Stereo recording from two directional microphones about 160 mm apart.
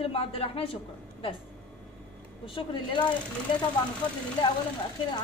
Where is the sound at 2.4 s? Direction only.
30° left (ahead or behind).